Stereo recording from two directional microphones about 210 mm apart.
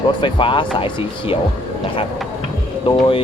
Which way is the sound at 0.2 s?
25° left (ahead or behind).